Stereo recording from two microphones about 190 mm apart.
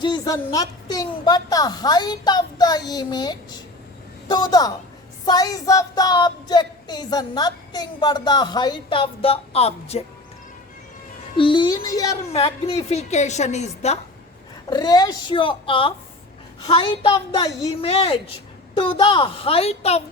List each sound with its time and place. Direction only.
0.0 s child singing: 25° left (ahead or behind)
11.3 s child singing: 25° left (ahead or behind)
12.3 s a woman's voice: 30° left (ahead or behind)
14.7 s child singing: 20° left (ahead or behind)